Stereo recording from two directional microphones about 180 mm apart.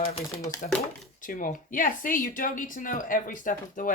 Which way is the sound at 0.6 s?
45° left (ahead or behind).